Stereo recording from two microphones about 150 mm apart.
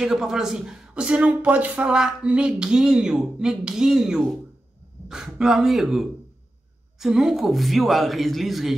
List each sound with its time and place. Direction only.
0.0 s speech: 5° right (ahead or behind)